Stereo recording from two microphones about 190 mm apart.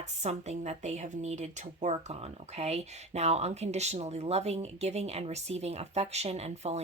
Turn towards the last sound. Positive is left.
turn(degrees=-35)  # may be behind; listen again after turning